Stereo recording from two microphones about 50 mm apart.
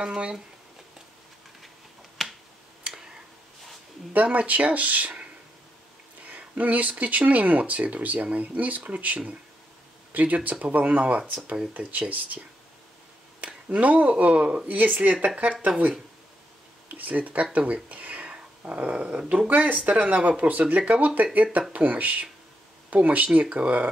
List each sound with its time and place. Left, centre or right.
0.0 s speech: centre
4.1 s speech: right
6.2 s speech: right
13.4 s speech: right
16.9 s speech: right